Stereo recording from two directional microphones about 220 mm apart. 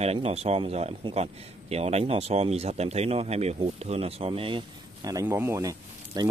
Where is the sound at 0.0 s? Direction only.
30° right (ahead or behind).